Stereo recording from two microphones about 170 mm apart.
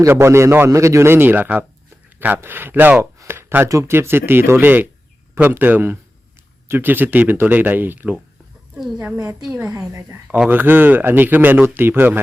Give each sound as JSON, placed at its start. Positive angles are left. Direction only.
{"t": 0.0, "sound": "a woman's voice", "side_deg": -15}
{"t": 9.6, "sound": "speech", "side_deg": -20}
{"t": 10.2, "sound": "speech", "side_deg": -5}